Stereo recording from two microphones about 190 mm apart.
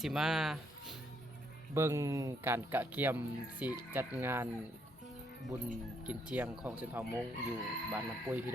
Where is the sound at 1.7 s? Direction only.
15° right (ahead or behind).